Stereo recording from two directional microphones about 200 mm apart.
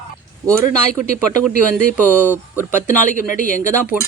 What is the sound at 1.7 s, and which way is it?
Speech, 10° left (ahead or behind).